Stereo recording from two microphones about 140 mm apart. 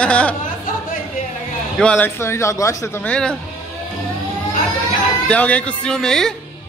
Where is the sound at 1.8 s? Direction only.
5° left (ahead or behind).